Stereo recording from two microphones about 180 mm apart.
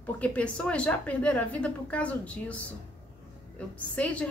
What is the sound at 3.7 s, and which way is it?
Speech, 5° left (ahead or behind).